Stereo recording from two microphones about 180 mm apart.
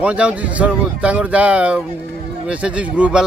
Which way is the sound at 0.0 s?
5° right (ahead or behind).